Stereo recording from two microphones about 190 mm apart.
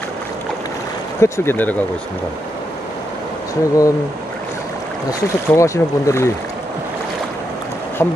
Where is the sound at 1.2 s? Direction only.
10° left (ahead or behind).